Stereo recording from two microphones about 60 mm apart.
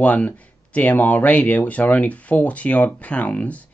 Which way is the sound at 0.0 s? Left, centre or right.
Left.